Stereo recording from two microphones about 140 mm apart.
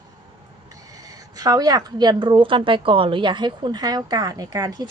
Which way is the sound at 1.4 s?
25° right (ahead or behind).